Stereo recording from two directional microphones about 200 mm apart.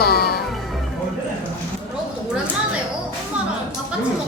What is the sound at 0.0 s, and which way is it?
Music, 50° left (ahead or behind).